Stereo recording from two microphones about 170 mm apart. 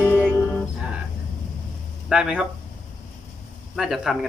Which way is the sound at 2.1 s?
5° right (ahead or behind).